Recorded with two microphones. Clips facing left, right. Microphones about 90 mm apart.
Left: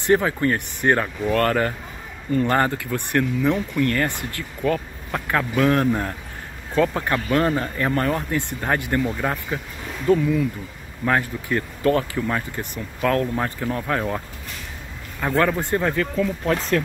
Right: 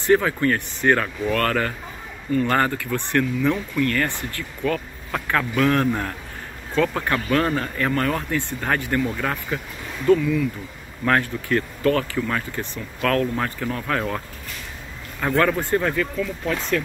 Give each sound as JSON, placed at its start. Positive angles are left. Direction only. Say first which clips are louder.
{"t": 0.0, "sound": "speech", "louder": "even", "side_deg": 20}
{"t": 10.0, "sound": "speech", "louder": "right 1 dB", "side_deg": 25}
{"t": 15.2, "sound": "speech", "louder": "even", "side_deg": 20}
{"t": 16.2, "sound": "speech", "louder": "left 3 dB", "side_deg": 40}